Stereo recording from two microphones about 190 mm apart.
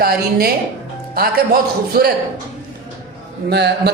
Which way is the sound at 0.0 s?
50° right (ahead or behind).